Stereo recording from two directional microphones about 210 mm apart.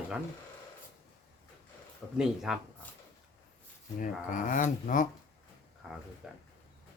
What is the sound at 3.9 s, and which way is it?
Speech, 40° left (ahead or behind).